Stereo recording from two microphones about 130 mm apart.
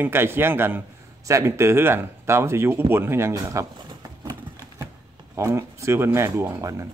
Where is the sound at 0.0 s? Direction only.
15° right (ahead or behind).